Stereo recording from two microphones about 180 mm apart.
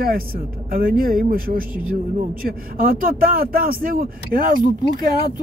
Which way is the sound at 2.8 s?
55° right (ahead or behind).